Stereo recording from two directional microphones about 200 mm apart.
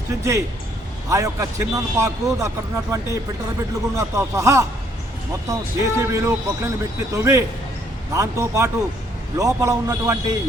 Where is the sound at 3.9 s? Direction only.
15° right (ahead or behind).